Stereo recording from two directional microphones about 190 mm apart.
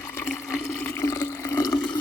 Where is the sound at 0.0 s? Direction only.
10° left (ahead or behind).